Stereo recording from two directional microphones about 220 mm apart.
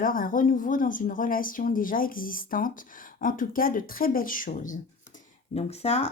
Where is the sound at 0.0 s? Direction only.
40° left (ahead or behind).